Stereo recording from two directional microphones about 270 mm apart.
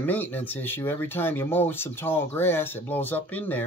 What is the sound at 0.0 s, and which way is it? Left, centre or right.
Speech, centre.